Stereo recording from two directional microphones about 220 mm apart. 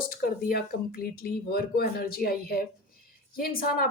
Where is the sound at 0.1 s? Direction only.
45° left (ahead or behind).